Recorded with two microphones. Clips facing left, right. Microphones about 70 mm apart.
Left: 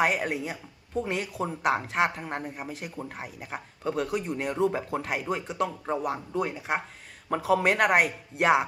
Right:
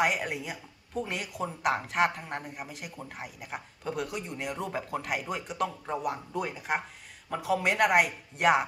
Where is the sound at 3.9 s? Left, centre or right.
Left.